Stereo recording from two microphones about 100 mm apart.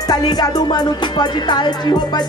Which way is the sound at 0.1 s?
45° left (ahead or behind).